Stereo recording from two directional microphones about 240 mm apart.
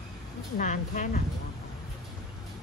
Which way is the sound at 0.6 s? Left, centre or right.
Left.